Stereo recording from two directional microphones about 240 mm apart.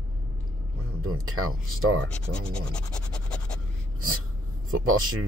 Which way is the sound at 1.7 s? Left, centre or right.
Right.